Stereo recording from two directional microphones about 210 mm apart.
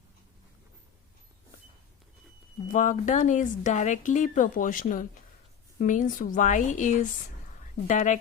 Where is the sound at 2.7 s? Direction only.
35° left (ahead or behind).